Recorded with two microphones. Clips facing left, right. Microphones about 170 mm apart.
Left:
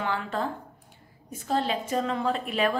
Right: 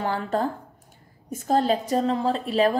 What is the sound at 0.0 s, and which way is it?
A woman's voice, 40° right (ahead or behind).